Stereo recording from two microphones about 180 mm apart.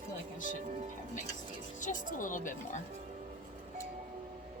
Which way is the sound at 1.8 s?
45° left (ahead or behind).